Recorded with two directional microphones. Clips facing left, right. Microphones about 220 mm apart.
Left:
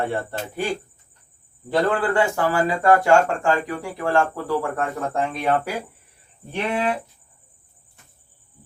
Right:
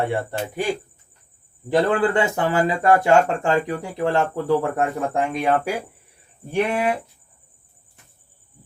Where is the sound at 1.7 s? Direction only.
20° right (ahead or behind).